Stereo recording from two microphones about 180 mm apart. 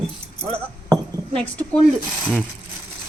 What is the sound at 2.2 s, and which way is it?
Speech, 5° left (ahead or behind).